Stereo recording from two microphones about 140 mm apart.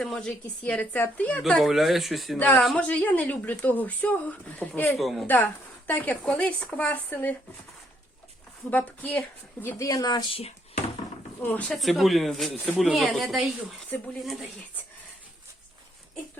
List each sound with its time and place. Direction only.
0.0 s a woman's voice: 5° left (ahead or behind)
2.4 s speech: 10° left (ahead or behind)
4.9 s a woman's voice: centre (ahead or behind)
5.2 s speech: 15° left (ahead or behind)
8.7 s speech: 10° left (ahead or behind); by 10.4 s 30° left (ahead or behind)
11.7 s a woman's voice: centre (ahead or behind)